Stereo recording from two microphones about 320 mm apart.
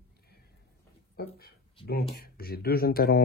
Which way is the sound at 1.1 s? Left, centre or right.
Left.